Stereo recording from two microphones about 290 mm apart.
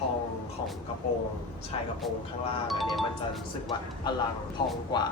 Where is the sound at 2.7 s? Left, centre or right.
Centre.